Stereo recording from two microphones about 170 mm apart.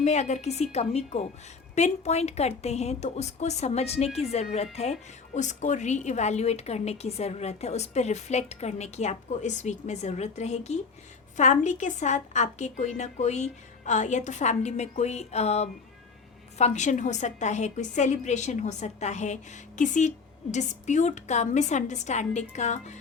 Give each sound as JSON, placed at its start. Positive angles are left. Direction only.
{"t": 0.0, "sound": "a woman's voice", "side_deg": 40}